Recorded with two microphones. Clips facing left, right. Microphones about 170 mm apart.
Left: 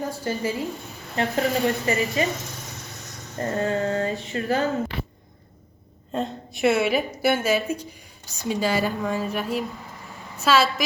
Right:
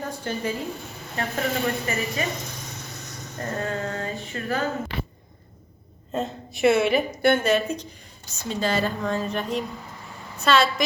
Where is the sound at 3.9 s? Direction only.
35° left (ahead or behind).